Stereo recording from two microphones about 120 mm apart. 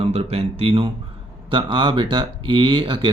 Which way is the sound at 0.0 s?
55° right (ahead or behind).